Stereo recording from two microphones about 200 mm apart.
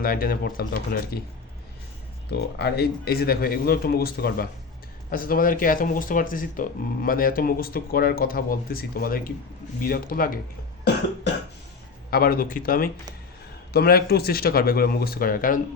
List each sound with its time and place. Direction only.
0.0 s speech: 45° left (ahead or behind)
2.6 s speech: 55° left (ahead or behind)
12.1 s speech: 45° left (ahead or behind)